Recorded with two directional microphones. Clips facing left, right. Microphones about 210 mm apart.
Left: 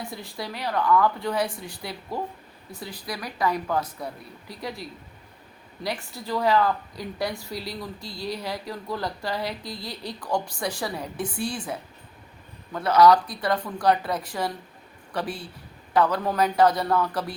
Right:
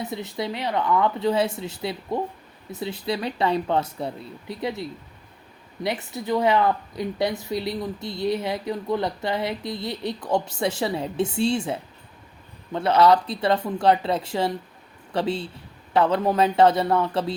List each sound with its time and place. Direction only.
0.0 s speech: 20° right (ahead or behind)